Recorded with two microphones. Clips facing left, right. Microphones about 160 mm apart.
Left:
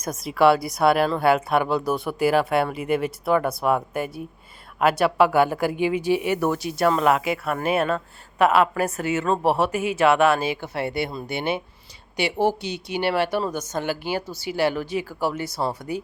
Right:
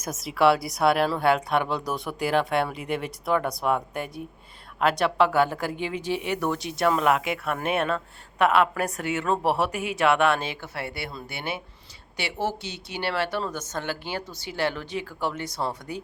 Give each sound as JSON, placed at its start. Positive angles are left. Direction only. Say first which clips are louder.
{"t": 0.0, "sound": "speech", "louder": "left 3 dB", "side_deg": 0}
{"t": 10.8, "sound": "speech", "louder": "left 7 dB", "side_deg": 20}